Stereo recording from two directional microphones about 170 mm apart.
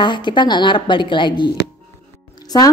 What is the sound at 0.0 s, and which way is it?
A woman's voice, 25° left (ahead or behind).